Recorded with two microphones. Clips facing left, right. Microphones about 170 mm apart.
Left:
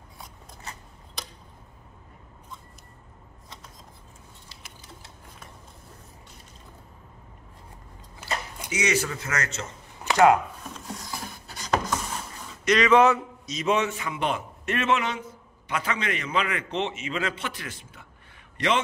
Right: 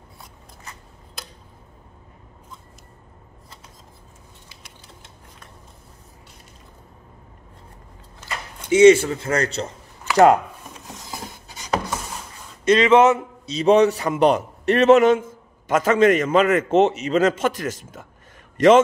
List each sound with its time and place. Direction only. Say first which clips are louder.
8.2 s a sound: left 1 dB; 10° left (ahead or behind)
8.6 s a man's voice: right 15 dB; 30° right (ahead or behind)
10.9 s filing: right 2 dB; 20° right (ahead or behind)
12.6 s a man's voice: right 5 dB; 25° right (ahead or behind); by 18.7 s 45° right (ahead or behind)